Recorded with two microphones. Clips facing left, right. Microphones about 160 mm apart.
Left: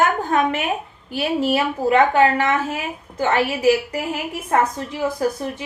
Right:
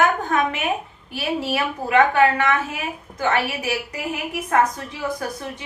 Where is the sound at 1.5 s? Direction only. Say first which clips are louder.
Left 2 dB; 30° left (ahead or behind).